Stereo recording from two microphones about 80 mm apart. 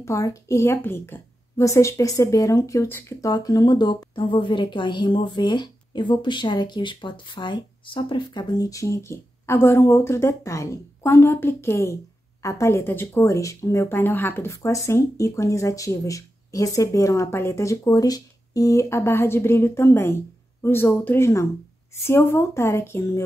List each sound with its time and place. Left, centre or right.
0.0 s speech: left
1.6 s speech: left
3.3 s a woman's voice: left
13.9 s speech: left
17.8 s speech: left